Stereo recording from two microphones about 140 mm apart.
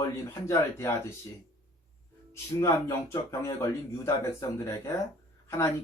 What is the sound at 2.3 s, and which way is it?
Speech, 20° left (ahead or behind).